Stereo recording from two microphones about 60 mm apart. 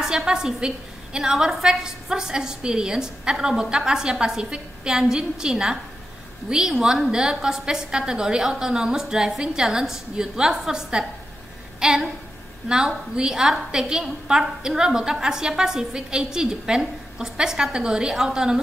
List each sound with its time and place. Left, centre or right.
0.0 s a woman's voice: centre
11.8 s a sound: centre
12.6 s a woman's voice: centre